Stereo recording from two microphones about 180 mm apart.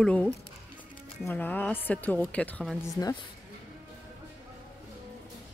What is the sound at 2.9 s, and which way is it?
Speech, 20° left (ahead or behind).